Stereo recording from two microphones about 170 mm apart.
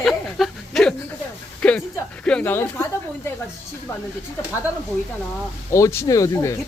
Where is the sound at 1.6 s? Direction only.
5° left (ahead or behind).